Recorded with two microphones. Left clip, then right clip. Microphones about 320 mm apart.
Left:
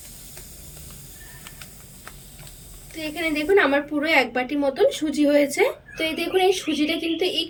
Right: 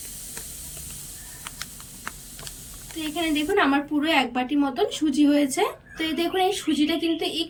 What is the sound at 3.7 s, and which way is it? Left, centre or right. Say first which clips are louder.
Speech: left 2 dB; right.